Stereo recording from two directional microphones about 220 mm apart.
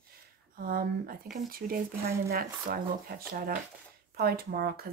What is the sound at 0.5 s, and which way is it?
Speech, 40° right (ahead or behind).